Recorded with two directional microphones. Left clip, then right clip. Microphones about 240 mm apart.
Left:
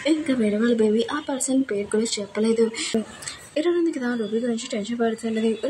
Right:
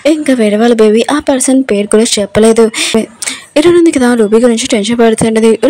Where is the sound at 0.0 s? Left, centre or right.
Right.